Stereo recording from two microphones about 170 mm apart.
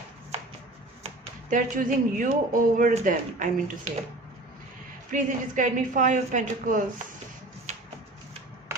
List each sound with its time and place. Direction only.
1.0 s speech: 50° right (ahead or behind)
5.1 s speech: 50° right (ahead or behind)